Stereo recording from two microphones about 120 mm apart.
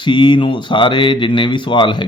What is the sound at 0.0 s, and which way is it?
Speech, 40° left (ahead or behind).